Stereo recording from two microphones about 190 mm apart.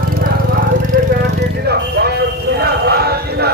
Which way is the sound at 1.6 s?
55° right (ahead or behind).